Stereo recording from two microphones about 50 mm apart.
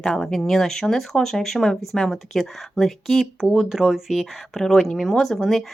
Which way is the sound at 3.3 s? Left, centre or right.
Centre.